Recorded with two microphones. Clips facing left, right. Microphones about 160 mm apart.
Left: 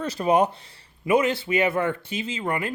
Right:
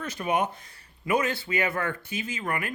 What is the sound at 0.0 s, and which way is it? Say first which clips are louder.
Speech: left 6 dB; 35° left (ahead or behind).